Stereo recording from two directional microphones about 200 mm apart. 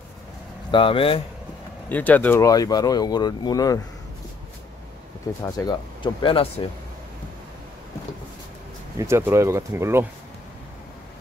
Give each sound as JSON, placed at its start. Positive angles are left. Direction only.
{"t": 0.7, "sound": "speech", "side_deg": 25}
{"t": 1.9, "sound": "speech", "side_deg": 10}
{"t": 5.4, "sound": "speech", "side_deg": 20}
{"t": 8.9, "sound": "speech", "side_deg": -15}